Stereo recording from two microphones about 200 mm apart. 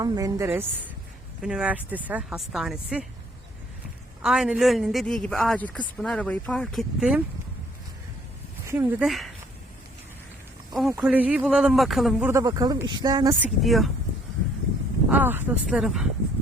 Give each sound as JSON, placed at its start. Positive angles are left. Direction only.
{"t": 0.0, "sound": "a man's voice", "side_deg": -20}
{"t": 4.2, "sound": "a man's voice", "side_deg": -5}
{"t": 8.6, "sound": "a man's voice", "side_deg": -10}
{"t": 10.8, "sound": "a man's voice", "side_deg": 0}
{"t": 12.3, "sound": "speech", "side_deg": -20}
{"t": 13.4, "sound": "a man's voice", "side_deg": 0}
{"t": 15.1, "sound": "speech", "side_deg": -10}